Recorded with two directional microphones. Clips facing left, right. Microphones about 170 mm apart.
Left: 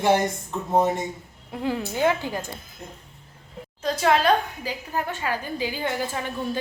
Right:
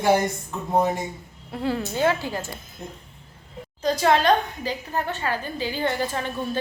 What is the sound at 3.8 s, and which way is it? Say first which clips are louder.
A woman's voice: right 1 dB; 5° left (ahead or behind).